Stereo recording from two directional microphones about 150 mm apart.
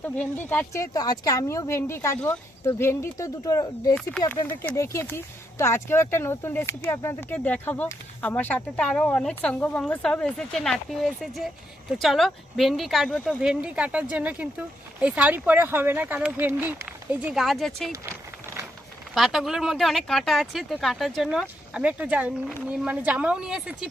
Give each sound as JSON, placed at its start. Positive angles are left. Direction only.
{"t": 0.0, "sound": "speech", "side_deg": 10}
{"t": 4.4, "sound": "speech", "side_deg": 15}
{"t": 13.4, "sound": "speech", "side_deg": -5}
{"t": 17.9, "sound": "a sound", "side_deg": -15}
{"t": 19.1, "sound": "speech", "side_deg": 0}